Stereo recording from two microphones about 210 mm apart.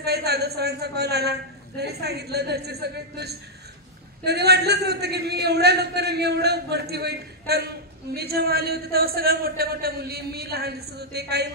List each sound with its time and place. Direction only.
0.0 s a man's voice: 50° right (ahead or behind)